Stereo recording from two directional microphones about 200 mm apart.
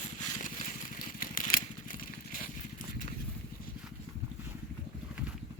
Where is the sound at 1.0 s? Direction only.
45° left (ahead or behind).